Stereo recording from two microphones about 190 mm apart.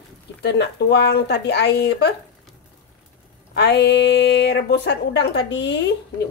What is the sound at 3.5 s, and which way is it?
A woman's voice, 65° left (ahead or behind).